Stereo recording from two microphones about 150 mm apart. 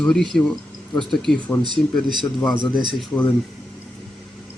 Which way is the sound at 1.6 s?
30° right (ahead or behind).